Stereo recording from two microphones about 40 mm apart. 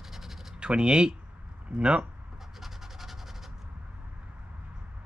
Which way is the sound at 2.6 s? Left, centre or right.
Centre.